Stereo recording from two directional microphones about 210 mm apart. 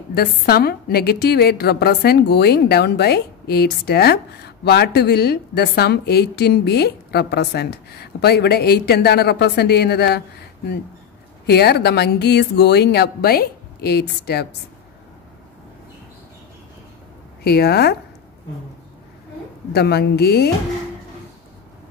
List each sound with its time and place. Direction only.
0.1 s a woman's voice: 45° left (ahead or behind)
11.4 s a woman's voice: 50° left (ahead or behind)
17.4 s a woman's voice: 50° left (ahead or behind)
19.7 s a woman's voice: 50° left (ahead or behind)